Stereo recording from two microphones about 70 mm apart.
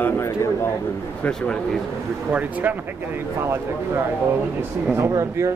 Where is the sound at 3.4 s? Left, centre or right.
Right.